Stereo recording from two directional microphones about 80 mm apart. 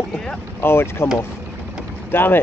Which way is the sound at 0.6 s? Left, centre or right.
Left.